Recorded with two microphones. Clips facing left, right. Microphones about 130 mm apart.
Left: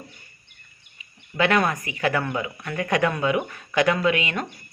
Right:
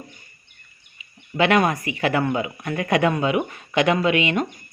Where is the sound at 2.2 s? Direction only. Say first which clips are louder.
Right 4 dB; 20° right (ahead or behind).